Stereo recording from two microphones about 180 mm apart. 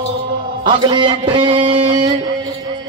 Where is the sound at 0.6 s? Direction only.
25° right (ahead or behind).